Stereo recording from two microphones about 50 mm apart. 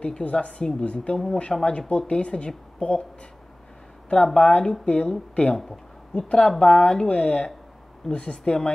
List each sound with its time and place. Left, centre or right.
0.0 s speech: left
4.1 s speech: left